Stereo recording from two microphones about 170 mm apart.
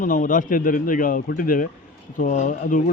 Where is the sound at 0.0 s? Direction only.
50° left (ahead or behind).